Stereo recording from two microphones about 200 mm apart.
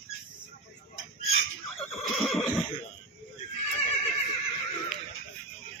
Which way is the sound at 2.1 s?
Centre (ahead or behind).